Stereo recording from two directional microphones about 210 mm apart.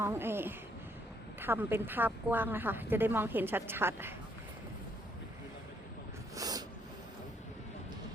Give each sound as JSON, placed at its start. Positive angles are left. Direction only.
{"t": 0.0, "sound": "a woman's voice", "side_deg": -10}
{"t": 6.3, "sound": "snort", "side_deg": -15}